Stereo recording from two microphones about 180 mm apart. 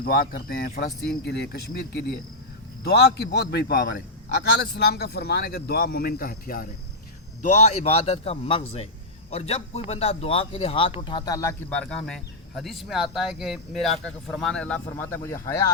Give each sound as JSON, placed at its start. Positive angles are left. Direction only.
{"t": 0.0, "sound": "a man's voice", "side_deg": 55}
{"t": 7.4, "sound": "a man's voice", "side_deg": 40}